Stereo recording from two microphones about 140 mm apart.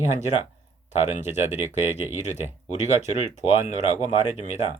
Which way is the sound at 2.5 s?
55° left (ahead or behind).